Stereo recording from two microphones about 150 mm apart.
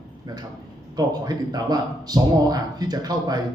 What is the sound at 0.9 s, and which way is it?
Speech, 25° right (ahead or behind).